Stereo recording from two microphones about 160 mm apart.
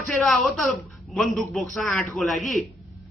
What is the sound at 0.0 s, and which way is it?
A man's voice, centre (ahead or behind).